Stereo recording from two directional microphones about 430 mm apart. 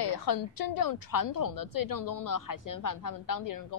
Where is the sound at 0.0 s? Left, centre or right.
Left.